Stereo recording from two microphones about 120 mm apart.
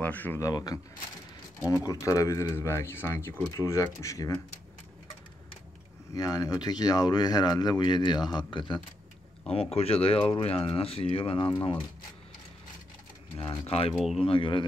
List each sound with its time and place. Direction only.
0.0 s speech: 15° left (ahead or behind)
0.4 s speech: 30° left (ahead or behind)
6.1 s speech: 30° left (ahead or behind)
9.5 s speech: 55° left (ahead or behind)
13.7 s speech: 55° left (ahead or behind)
13.9 s speech: centre (ahead or behind)
14.2 s speech: 45° left (ahead or behind)